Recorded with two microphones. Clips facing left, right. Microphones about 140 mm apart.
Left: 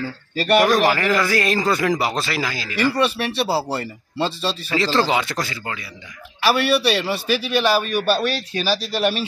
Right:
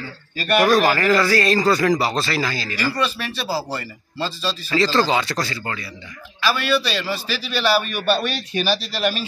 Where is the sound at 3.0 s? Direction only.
65° left (ahead or behind).